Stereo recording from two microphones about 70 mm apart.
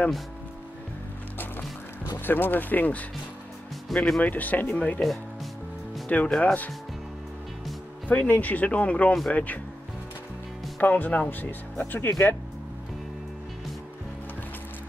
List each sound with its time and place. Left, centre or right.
2.1 s speech: left
3.9 s speech: centre
4.2 s speech: left
5.0 s music: centre
6.0 s speech: centre
8.1 s speech: left
10.8 s speech: left